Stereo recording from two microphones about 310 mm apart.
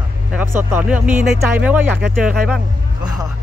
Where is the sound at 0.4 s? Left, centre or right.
Centre.